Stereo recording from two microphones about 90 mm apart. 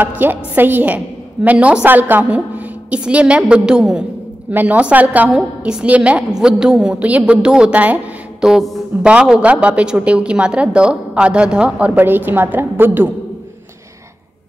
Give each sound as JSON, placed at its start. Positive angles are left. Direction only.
{"t": 0.2, "sound": "a man's voice", "side_deg": -20}
{"t": 8.5, "sound": "a man's voice", "side_deg": -5}